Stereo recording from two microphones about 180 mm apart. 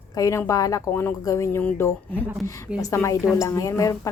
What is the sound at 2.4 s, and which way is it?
Speech, 15° left (ahead or behind).